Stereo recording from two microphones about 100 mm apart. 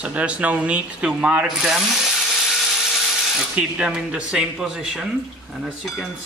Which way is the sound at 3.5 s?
10° right (ahead or behind).